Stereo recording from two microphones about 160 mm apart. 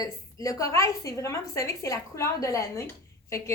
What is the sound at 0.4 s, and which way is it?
A woman's voice, 20° left (ahead or behind).